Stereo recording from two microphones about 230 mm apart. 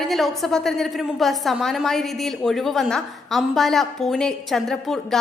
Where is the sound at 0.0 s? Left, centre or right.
Centre.